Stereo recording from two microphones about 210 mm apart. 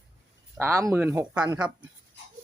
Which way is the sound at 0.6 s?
15° right (ahead or behind).